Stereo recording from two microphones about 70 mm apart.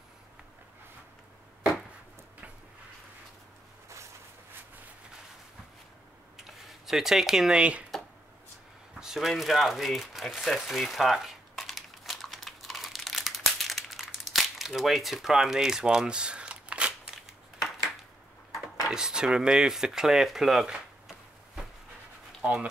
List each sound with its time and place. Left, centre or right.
6.3 s tick-tock: centre
9.0 s speech: centre
10.4 s crumpling: centre
18.9 s speech: centre
20.6 s a sound: centre
22.4 s speech: centre